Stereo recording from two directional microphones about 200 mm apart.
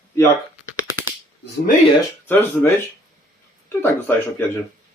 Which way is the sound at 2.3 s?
10° left (ahead or behind).